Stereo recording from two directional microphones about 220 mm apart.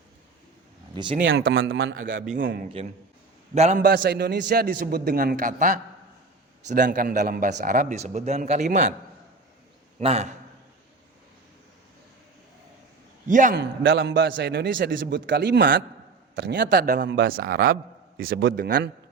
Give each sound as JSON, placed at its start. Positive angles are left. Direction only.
{"t": 1.2, "sound": "a man's voice", "side_deg": -60}
{"t": 2.8, "sound": "a man's voice", "side_deg": -25}
{"t": 3.9, "sound": "a man's voice", "side_deg": -50}
{"t": 10.0, "sound": "a man's voice", "side_deg": -30}
{"t": 13.2, "sound": "speech", "side_deg": -35}
{"t": 13.6, "sound": "a man's voice", "side_deg": -55}